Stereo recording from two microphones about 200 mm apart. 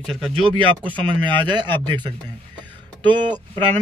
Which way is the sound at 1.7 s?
25° right (ahead or behind).